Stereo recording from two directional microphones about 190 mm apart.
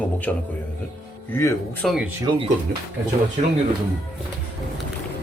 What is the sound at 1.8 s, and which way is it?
Speech, centre (ahead or behind).